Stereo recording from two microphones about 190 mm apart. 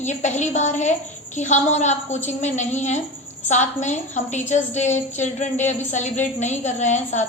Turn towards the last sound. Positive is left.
turn(degrees=40)  # may be behind; listen again after turning